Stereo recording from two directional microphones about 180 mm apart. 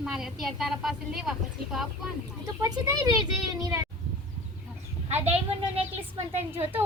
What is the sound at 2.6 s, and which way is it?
A child's voice, 20° right (ahead or behind).